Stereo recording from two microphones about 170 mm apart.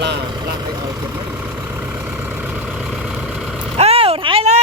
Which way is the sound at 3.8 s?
35° right (ahead or behind).